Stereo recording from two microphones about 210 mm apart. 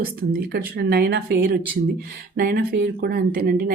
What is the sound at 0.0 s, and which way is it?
Speech, 45° right (ahead or behind).